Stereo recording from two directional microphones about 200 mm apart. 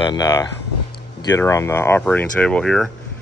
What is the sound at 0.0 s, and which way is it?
Speech, 20° left (ahead or behind).